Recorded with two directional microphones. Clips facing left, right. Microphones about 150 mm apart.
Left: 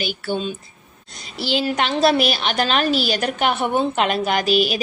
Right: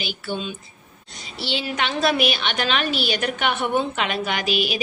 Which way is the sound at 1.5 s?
40° left (ahead or behind).